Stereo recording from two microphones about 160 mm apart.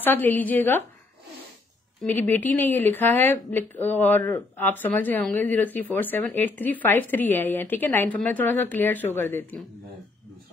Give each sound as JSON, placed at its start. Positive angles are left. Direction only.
{"t": 0.0, "sound": "speech", "side_deg": 10}
{"t": 2.3, "sound": "speech", "side_deg": 10}